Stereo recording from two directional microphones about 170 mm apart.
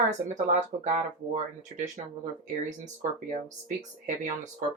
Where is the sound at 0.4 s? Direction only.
45° right (ahead or behind).